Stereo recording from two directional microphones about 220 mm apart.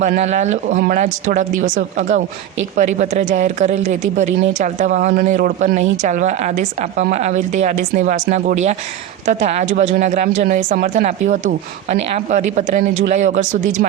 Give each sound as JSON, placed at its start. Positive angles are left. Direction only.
{"t": 0.0, "sound": "speech", "side_deg": -30}